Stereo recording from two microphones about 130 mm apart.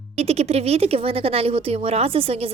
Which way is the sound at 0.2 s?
50° right (ahead or behind).